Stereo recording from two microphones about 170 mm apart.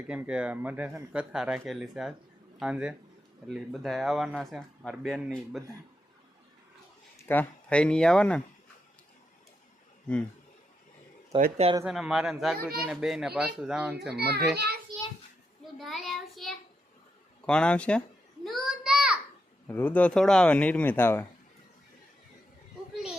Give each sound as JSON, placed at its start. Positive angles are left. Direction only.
{"t": 0.1, "sound": "speech", "side_deg": -5}
{"t": 7.2, "sound": "speech", "side_deg": 10}
{"t": 11.5, "sound": "speech", "side_deg": -35}
{"t": 11.9, "sound": "speech", "side_deg": 0}
{"t": 14.2, "sound": "a child's voice", "side_deg": -70}
{"t": 15.6, "sound": "child singing", "side_deg": 0}
{"t": 17.4, "sound": "speech", "side_deg": 5}
{"t": 18.4, "sound": "child singing", "side_deg": 0}
{"t": 19.6, "sound": "speech", "side_deg": 10}